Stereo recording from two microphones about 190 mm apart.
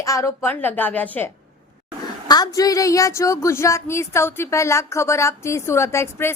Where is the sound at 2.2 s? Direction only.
20° left (ahead or behind).